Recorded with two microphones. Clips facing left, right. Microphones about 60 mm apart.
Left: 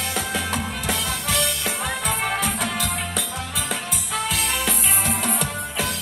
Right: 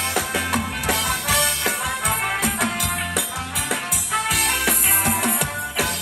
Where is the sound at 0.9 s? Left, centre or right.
Right.